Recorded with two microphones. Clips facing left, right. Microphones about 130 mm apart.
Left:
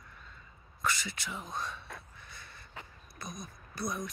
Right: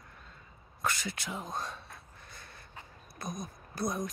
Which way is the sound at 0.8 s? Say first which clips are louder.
Even; 50° right (ahead or behind).